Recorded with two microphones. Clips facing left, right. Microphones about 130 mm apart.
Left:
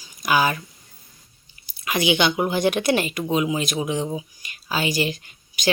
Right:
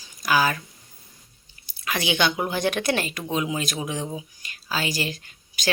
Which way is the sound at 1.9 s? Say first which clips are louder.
Left 4 dB; 15° left (ahead or behind).